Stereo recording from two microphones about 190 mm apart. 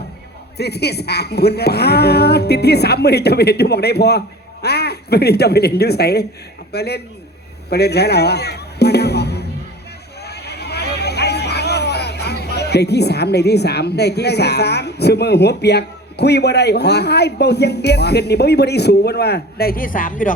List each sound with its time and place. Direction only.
0.5 s speech: 60° left (ahead or behind)
7.7 s music: 60° left (ahead or behind)
10.2 s speech: 60° left (ahead or behind); by 20.3 s 45° left (ahead or behind)